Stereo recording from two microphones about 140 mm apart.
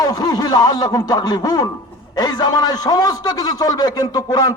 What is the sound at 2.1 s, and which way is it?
A man's voice, 30° left (ahead or behind).